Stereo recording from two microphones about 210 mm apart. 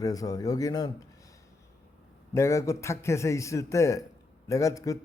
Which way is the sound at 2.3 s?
15° left (ahead or behind).